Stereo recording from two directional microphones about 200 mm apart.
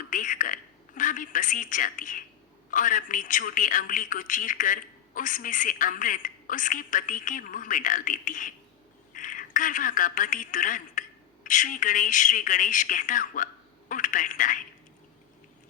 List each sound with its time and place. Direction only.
0.1 s a woman's voice: 40° left (ahead or behind)